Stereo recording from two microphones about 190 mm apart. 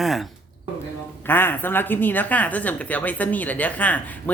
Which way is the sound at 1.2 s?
10° left (ahead or behind).